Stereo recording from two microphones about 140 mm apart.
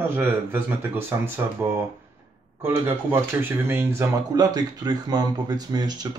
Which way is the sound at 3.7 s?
15° right (ahead or behind).